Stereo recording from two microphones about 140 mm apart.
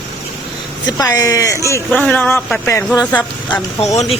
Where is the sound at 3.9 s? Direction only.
50° left (ahead or behind).